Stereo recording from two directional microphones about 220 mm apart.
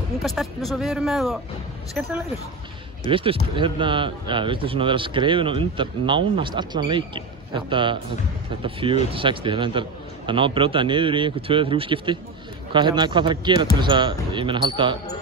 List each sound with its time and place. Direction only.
0.2 s speech: centre (ahead or behind)
3.1 s a man's voice: 25° right (ahead or behind)